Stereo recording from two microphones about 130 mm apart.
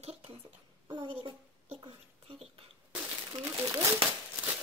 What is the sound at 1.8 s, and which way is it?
Speech, 45° right (ahead or behind).